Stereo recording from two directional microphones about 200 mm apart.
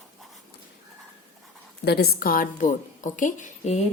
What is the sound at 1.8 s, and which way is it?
A woman's voice, 50° left (ahead or behind).